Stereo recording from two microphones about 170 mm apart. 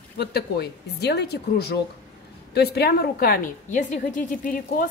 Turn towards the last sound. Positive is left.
turn(degrees=55)  # may be behind; listen again after turning